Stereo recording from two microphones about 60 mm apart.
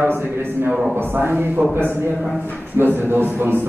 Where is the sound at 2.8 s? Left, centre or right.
Right.